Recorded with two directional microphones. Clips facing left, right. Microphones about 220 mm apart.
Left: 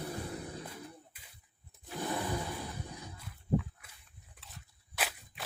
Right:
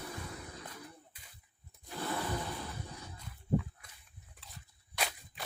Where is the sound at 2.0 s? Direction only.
15° left (ahead or behind).